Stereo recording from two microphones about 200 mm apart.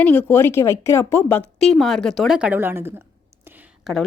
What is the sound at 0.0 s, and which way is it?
A woman's voice, 10° left (ahead or behind).